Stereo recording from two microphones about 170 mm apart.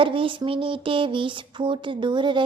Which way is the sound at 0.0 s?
30° right (ahead or behind).